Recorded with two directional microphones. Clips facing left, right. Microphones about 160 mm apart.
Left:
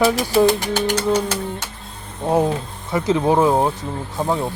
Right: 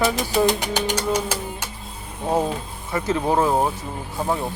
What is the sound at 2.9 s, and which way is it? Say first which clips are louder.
Speech: left 4 dB; 15° left (ahead or behind).